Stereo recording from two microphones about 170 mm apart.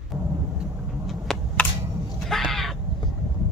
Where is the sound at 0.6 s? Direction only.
Centre (ahead or behind).